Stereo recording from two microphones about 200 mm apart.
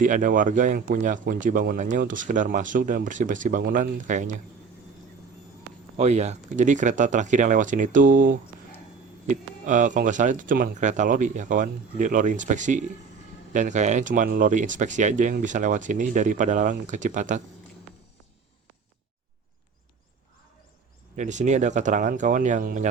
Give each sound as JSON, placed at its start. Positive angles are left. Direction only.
{"t": 0.0, "sound": "speech", "side_deg": -40}
{"t": 6.0, "sound": "speech", "side_deg": -35}
{"t": 21.2, "sound": "speech", "side_deg": -35}